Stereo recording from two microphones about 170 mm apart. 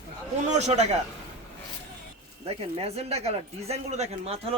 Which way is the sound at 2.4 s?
35° right (ahead or behind).